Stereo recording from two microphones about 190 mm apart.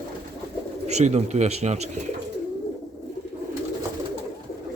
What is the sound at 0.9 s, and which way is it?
Speech, 35° right (ahead or behind).